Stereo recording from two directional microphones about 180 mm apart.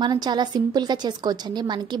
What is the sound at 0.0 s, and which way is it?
A woman's voice, 25° right (ahead or behind).